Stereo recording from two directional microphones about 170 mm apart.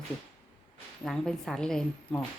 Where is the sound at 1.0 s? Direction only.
5° left (ahead or behind).